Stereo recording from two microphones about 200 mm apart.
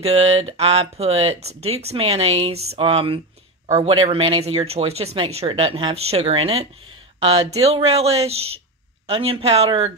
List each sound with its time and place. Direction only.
0.0 s speech: 30° right (ahead or behind)